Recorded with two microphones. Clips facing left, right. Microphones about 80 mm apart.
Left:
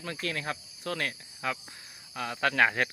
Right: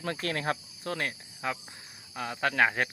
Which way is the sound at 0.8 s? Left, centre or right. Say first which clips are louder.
Even; right.